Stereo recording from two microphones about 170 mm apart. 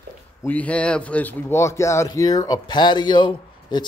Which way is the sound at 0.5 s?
10° left (ahead or behind).